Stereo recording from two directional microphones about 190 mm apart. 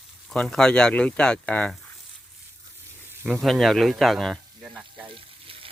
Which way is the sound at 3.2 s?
Centre (ahead or behind).